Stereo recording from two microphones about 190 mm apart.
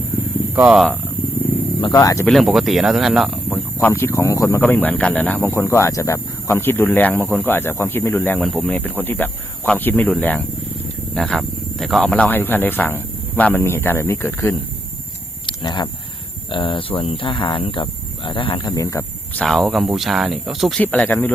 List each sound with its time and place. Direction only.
0.5 s speech: 5° right (ahead or behind)
1.8 s speech: 20° left (ahead or behind)
2.2 s speech: centre (ahead or behind)
3.8 s speech: 10° left (ahead or behind)
15.4 s a sound: 25° left (ahead or behind)
16.5 s speech: 25° left (ahead or behind); by 21.3 s 10° left (ahead or behind)